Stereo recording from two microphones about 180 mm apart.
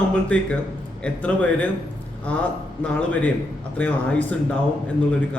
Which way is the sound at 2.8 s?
5° left (ahead or behind).